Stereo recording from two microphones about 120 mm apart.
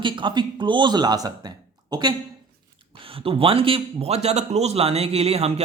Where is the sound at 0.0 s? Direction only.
40° right (ahead or behind).